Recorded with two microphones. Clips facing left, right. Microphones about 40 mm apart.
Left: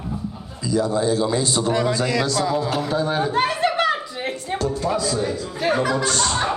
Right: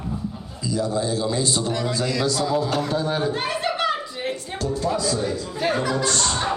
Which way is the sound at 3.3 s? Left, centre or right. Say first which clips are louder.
Left 5 dB; left.